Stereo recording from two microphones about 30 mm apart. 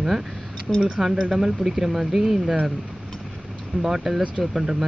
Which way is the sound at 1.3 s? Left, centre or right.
Centre.